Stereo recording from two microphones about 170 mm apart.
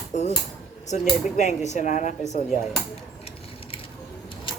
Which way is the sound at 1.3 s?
40° left (ahead or behind).